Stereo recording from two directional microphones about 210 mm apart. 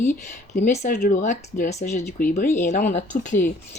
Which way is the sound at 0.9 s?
50° left (ahead or behind).